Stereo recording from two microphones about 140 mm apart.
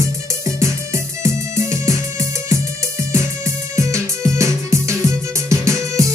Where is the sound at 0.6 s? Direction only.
20° right (ahead or behind).